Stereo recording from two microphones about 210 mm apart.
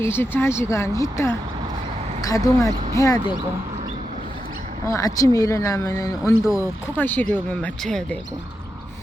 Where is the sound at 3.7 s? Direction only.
30° right (ahead or behind).